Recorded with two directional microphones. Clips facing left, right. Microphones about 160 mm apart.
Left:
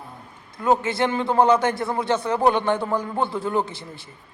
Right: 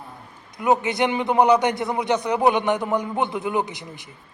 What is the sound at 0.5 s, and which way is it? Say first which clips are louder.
A man's voice: even; 15° right (ahead or behind).